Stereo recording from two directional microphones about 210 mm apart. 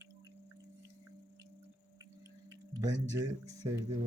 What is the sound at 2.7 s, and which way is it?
Speech, 15° right (ahead or behind).